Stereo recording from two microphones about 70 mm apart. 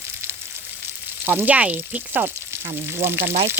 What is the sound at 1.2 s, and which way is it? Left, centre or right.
Frying, right.